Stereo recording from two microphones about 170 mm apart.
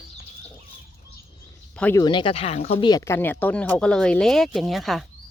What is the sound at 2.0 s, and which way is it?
Speech, 30° left (ahead or behind).